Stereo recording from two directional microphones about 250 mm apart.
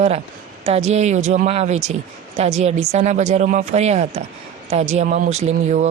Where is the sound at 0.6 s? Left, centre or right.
Right.